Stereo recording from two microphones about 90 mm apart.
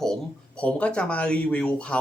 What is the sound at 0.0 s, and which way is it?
Speech, 10° left (ahead or behind).